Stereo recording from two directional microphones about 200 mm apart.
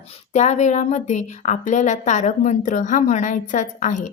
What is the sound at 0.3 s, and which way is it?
A woman's voice, 35° left (ahead or behind).